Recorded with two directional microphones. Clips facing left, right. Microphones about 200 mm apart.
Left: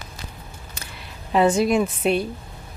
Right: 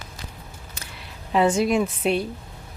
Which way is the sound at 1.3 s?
40° left (ahead or behind).